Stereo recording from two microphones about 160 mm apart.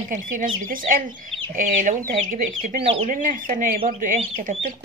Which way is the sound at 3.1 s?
55° right (ahead or behind).